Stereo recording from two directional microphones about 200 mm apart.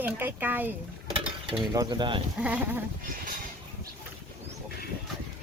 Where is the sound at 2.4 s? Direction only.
5° right (ahead or behind).